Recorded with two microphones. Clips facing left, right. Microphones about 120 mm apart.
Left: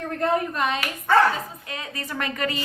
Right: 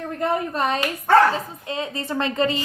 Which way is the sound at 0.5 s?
35° right (ahead or behind).